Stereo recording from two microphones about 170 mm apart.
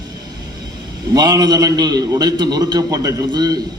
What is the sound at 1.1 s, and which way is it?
A man's voice, 20° right (ahead or behind).